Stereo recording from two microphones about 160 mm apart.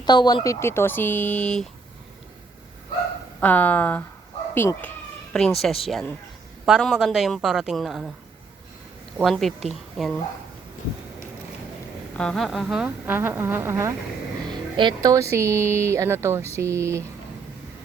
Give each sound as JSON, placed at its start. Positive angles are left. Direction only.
{"t": 0.0, "sound": "speech", "side_deg": 25}
{"t": 3.4, "sound": "speech", "side_deg": 10}
{"t": 9.1, "sound": "speech", "side_deg": 0}
{"t": 12.1, "sound": "speech", "side_deg": 5}
{"t": 14.5, "sound": "speech", "side_deg": -30}